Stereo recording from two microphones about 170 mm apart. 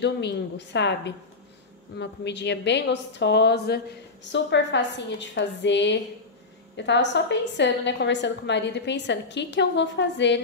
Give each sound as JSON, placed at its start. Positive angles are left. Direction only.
{"t": 0.0, "sound": "a woman's voice", "side_deg": 90}